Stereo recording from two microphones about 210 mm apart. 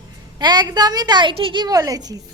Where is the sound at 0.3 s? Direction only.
20° right (ahead or behind).